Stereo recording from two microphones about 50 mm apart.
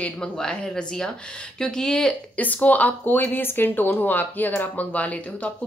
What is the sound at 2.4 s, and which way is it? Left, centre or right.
Speech, left.